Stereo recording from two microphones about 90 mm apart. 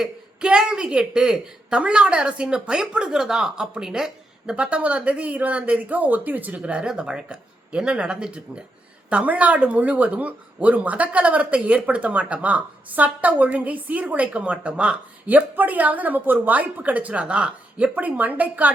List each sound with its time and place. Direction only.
0.0 s speech: 5° right (ahead or behind)